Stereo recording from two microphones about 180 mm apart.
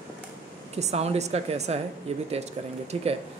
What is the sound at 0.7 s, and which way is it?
Speech, 35° right (ahead or behind).